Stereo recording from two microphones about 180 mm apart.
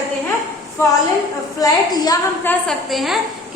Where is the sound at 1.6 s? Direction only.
20° left (ahead or behind).